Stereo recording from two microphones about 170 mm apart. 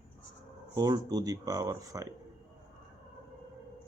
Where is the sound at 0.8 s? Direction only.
20° right (ahead or behind).